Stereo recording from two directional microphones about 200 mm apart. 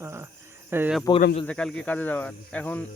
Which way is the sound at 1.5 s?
5° left (ahead or behind).